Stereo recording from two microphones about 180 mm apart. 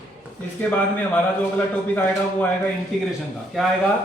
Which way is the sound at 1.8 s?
10° left (ahead or behind).